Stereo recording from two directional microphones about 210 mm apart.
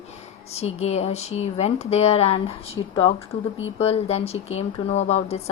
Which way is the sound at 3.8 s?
30° left (ahead or behind).